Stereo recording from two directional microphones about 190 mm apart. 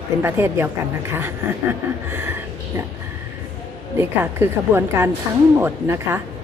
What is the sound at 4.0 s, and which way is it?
A woman's voice, 10° right (ahead or behind).